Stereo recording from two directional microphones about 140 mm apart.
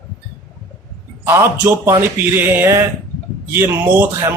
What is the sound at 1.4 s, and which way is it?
Speech, 20° right (ahead or behind).